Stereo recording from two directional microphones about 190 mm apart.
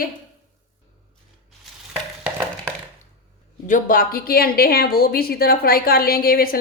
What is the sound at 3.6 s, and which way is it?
A woman's voice, 45° left (ahead or behind).